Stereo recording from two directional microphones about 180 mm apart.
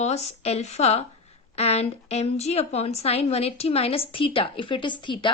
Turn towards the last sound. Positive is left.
turn(degrees=25)  # may be behind; listen again after turning